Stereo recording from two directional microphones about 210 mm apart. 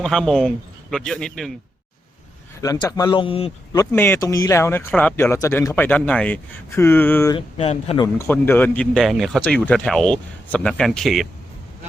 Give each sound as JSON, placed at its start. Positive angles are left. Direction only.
{"t": 0.0, "sound": "speech", "side_deg": 0}
{"t": 2.6, "sound": "a man's voice", "side_deg": 20}
{"t": 3.8, "sound": "speech", "side_deg": 10}
{"t": 7.3, "sound": "a man's voice", "side_deg": 30}
{"t": 8.0, "sound": "speech", "side_deg": 10}